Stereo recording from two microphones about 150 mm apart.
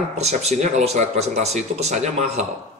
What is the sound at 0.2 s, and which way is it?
A man's voice, 45° right (ahead or behind).